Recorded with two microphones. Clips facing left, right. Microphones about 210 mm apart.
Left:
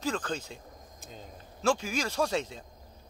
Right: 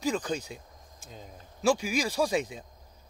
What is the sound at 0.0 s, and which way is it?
Speech, 10° right (ahead or behind).